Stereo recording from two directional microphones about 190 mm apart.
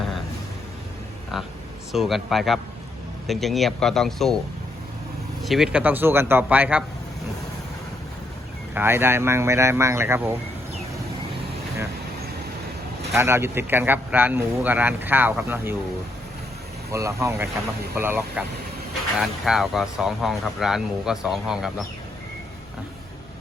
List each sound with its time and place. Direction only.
1.9 s speech: centre (ahead or behind)
5.4 s speech: centre (ahead or behind)
8.7 s speech: 10° right (ahead or behind)
13.1 s speech: 15° right (ahead or behind)
16.9 s speech: 15° right (ahead or behind)
19.2 s speech: centre (ahead or behind)